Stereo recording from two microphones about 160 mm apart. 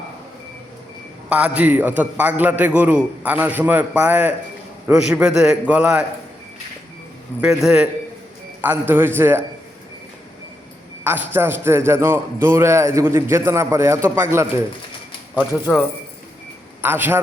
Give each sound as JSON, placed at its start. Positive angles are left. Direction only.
{"t": 1.3, "sound": "a man's voice", "side_deg": -10}
{"t": 7.4, "sound": "a man's voice", "side_deg": -5}
{"t": 11.0, "sound": "a man's voice", "side_deg": -10}
{"t": 16.8, "sound": "a man's voice", "side_deg": -15}